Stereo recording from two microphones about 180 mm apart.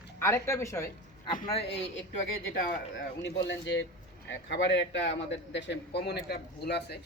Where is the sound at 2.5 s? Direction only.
55° left (ahead or behind).